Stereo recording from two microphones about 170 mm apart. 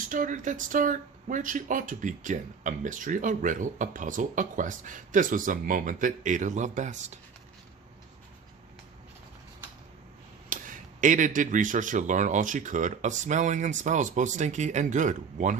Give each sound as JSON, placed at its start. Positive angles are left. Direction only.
{"t": 0.1, "sound": "speech", "side_deg": -50}
{"t": 10.5, "sound": "speech", "side_deg": -50}